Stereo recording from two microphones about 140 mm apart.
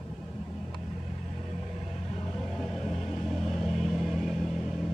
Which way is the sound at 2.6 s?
Centre (ahead or behind).